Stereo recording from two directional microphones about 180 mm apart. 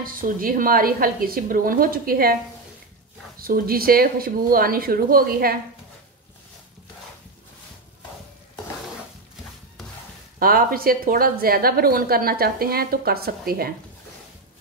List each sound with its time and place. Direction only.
0.0 s a woman's voice: 50° right (ahead or behind)
3.3 s a woman's voice: 55° right (ahead or behind)
10.4 s a woman's voice: 55° right (ahead or behind)